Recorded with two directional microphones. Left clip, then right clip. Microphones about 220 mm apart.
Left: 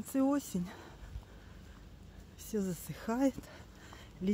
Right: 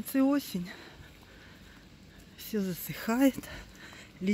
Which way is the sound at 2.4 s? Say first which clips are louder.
Right 3 dB; centre (ahead or behind).